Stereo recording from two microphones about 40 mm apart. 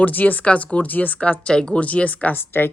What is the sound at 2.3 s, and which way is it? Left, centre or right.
Speech, left.